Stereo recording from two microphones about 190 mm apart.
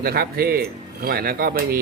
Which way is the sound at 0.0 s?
50° right (ahead or behind).